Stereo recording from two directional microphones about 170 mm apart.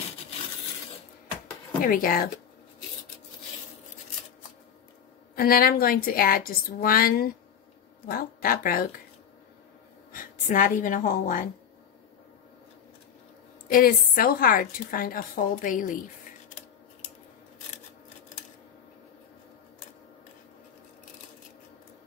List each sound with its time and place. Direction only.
1.8 s a woman's voice: 55° left (ahead or behind)
5.3 s a woman's voice: 60° left (ahead or behind)
10.1 s a woman's voice: 50° left (ahead or behind)
13.7 s a woman's voice: 55° left (ahead or behind)